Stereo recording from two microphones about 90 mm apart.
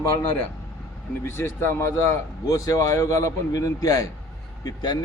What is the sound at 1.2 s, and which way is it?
Speech, 25° left (ahead or behind).